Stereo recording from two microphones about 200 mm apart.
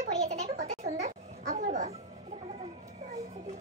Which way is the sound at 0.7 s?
35° right (ahead or behind).